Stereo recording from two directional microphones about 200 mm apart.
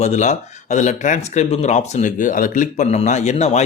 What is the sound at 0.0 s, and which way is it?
Speech, 35° left (ahead or behind).